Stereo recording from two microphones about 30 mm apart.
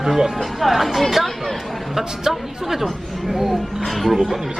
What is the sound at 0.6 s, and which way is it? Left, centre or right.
Speech, centre.